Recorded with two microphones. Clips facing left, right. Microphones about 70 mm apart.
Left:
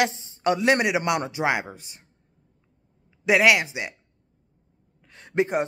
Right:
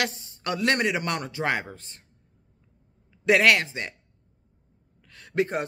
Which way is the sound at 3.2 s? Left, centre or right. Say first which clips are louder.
Left 1 dB; centre.